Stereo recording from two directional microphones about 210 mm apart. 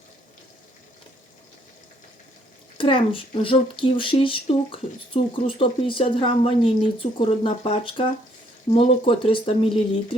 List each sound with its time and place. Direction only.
2.7 s speech: 25° left (ahead or behind)